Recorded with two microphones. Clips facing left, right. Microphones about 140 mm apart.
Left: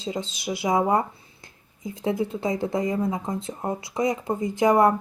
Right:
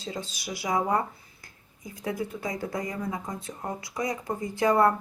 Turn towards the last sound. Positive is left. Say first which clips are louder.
# left 4 dB
turn(degrees=20)  # may be behind; listen again after turning